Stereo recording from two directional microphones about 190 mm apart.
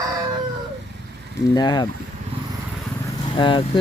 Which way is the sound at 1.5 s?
25° left (ahead or behind).